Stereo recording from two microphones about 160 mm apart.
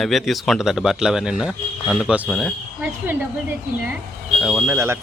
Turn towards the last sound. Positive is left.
turn(degrees=-15)  # may be behind; listen again after turning